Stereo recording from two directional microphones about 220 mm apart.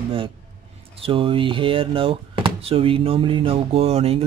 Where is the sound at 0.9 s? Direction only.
25° right (ahead or behind).